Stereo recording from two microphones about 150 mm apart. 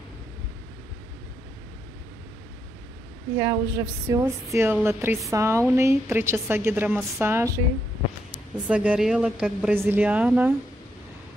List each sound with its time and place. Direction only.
3.3 s a woman's voice: 20° right (ahead or behind)
8.6 s a woman's voice: 10° right (ahead or behind)